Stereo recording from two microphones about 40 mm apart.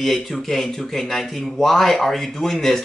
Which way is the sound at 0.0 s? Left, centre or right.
Centre.